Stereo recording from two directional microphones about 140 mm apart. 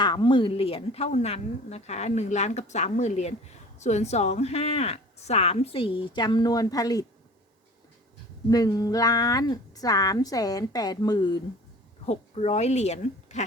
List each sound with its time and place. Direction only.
0.0 s a woman's voice: 30° left (ahead or behind)
8.4 s speech: 25° left (ahead or behind)
12.0 s speech: 50° left (ahead or behind)